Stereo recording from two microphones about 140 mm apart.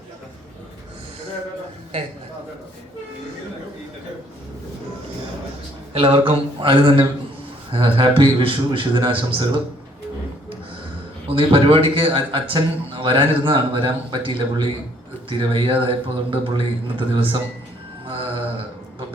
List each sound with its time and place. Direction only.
5.9 s a sound: 45° right (ahead or behind)
7.7 s a man's voice: 35° right (ahead or behind)
11.3 s a man's voice: 40° right (ahead or behind)
18.0 s mantra: 40° right (ahead or behind)